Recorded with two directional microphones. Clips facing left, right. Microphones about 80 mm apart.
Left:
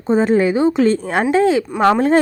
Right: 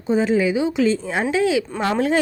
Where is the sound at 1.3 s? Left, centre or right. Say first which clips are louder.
Left 5 dB; left.